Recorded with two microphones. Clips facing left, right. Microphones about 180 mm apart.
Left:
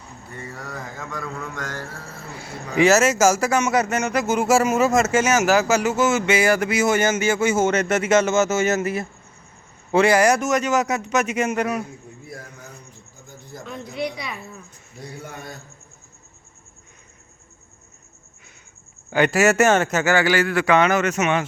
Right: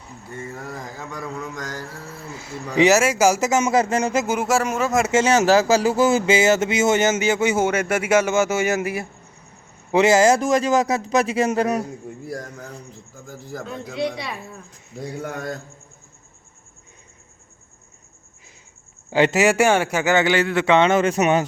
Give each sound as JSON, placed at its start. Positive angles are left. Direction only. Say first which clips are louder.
{"t": 0.8, "sound": "speech", "louder": "even", "side_deg": -35}
{"t": 1.1, "sound": "a man's voice", "louder": "right 1 dB", "side_deg": -15}
{"t": 2.7, "sound": "speech", "louder": "even", "side_deg": -15}
{"t": 4.3, "sound": "speech", "louder": "left 3 dB", "side_deg": 0}
{"t": 5.1, "sound": "speech", "louder": "right 2 dB", "side_deg": -30}
{"t": 12.7, "sound": "a man's voice", "louder": "right 6 dB", "side_deg": -90}
{"t": 13.7, "sound": "speech", "louder": "right 2 dB", "side_deg": -30}
{"t": 15.2, "sound": "a man's voice", "louder": "right 9 dB", "side_deg": -85}
{"t": 19.1, "sound": "speech", "louder": "even", "side_deg": -20}